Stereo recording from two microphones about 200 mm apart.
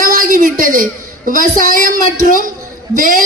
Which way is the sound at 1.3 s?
45° right (ahead or behind).